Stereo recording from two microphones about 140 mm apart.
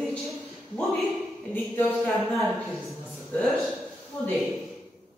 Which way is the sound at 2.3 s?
Centre (ahead or behind).